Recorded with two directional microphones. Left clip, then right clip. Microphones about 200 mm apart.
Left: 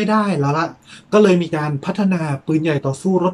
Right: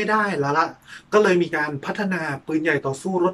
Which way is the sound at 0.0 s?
15° left (ahead or behind).